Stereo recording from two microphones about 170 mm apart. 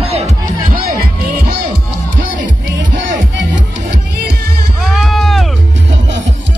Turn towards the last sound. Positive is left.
turn(degrees=0)  # may be behind; listen again after turning